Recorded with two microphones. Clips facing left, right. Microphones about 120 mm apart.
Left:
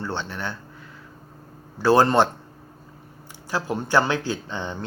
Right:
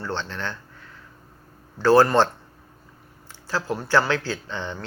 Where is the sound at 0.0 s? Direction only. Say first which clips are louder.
Even; 15° left (ahead or behind).